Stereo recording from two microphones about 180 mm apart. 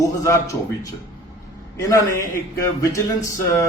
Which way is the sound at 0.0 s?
20° left (ahead or behind).